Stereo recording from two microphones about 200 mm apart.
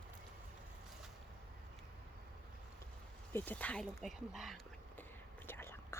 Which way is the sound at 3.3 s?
10° left (ahead or behind).